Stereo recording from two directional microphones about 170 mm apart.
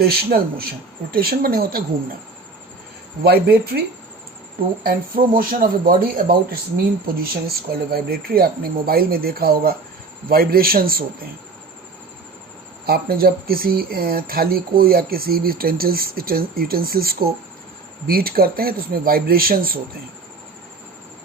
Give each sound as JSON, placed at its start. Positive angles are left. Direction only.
{"t": 0.0, "sound": "speech", "side_deg": -65}
{"t": 3.2, "sound": "speech", "side_deg": -70}
{"t": 4.8, "sound": "speech", "side_deg": -55}
{"t": 12.8, "sound": "speech", "side_deg": -65}